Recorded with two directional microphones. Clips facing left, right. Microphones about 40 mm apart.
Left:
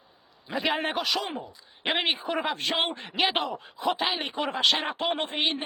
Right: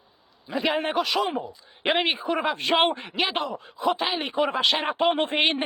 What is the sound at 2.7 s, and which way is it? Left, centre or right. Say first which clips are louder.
Speech: right 10 dB; right.